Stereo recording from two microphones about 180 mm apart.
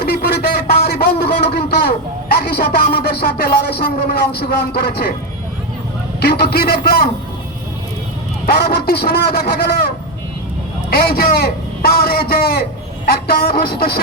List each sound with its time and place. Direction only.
0.0 s a sound: 60° left (ahead or behind)
6.1 s a man's voice: 60° left (ahead or behind)
8.4 s a man's voice: 60° left (ahead or behind)
10.8 s a man's voice: 60° left (ahead or behind)